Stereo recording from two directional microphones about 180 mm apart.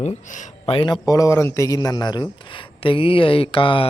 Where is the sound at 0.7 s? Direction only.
30° left (ahead or behind).